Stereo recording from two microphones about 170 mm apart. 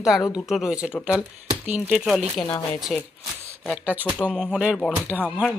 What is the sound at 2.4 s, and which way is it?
Speech, 25° left (ahead or behind).